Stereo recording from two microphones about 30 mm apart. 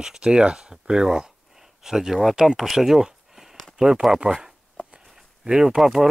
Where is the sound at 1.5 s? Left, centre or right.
Centre.